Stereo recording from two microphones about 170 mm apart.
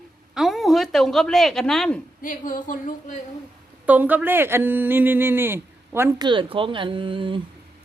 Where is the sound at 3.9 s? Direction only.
10° right (ahead or behind).